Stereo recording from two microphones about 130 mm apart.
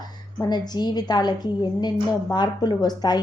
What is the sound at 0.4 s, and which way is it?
Speech, 30° left (ahead or behind).